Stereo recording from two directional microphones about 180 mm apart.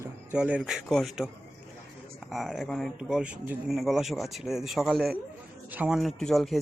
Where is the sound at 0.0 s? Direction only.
10° right (ahead or behind).